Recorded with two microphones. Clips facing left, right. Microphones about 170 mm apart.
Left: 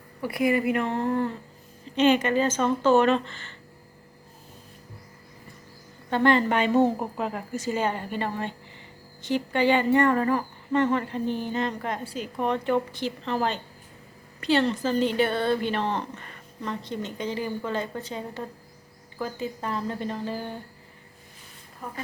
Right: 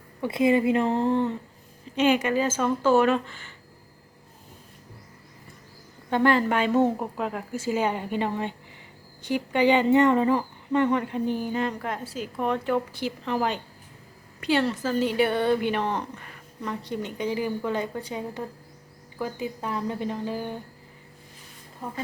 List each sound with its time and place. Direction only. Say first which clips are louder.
0.2 s a woman's voice: right 3 dB; 25° right (ahead or behind)
2.0 s speech: left 1 dB; 10° right (ahead or behind)
6.1 s a woman's voice: even; 10° right (ahead or behind)
6.8 s speech: even; 5° left (ahead or behind); by 20.6 s 15° right (ahead or behind)
21.8 s a woman's voice: right 2 dB; 30° right (ahead or behind)